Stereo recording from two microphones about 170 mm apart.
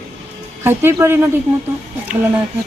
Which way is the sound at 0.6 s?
15° right (ahead or behind).